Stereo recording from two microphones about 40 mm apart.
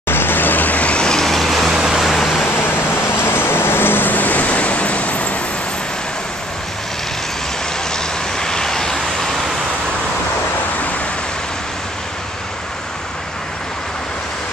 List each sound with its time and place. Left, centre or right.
0.1 s vehicle: left
0.8 s vehicle: left
1.1 s vehicle: centre
2.0 s vehicle: centre
2.4 s vehicle: left
7.9 s vehicle: centre